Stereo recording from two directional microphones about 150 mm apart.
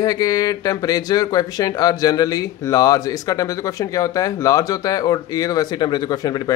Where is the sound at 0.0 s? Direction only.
25° left (ahead or behind).